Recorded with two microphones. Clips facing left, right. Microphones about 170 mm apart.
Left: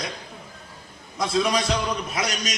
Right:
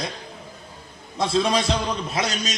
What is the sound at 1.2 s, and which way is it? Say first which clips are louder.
A man's voice: right 2 dB; 25° right (ahead or behind).